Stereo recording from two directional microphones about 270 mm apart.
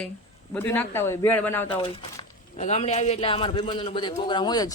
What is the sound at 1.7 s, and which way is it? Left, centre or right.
Speech, centre.